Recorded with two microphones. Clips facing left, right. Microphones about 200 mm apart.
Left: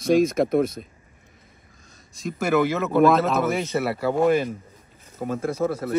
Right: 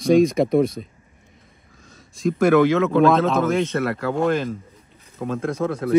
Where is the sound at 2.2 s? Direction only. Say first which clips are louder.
Right 6 dB; 5° left (ahead or behind).